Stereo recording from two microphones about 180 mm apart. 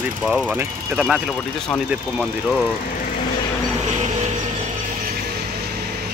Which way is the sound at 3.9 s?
40° right (ahead or behind).